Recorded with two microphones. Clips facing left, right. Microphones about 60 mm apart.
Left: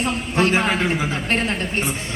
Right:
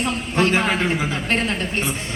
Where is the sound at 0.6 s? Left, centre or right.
Centre.